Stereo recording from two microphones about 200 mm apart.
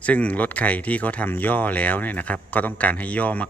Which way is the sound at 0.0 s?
5° left (ahead or behind).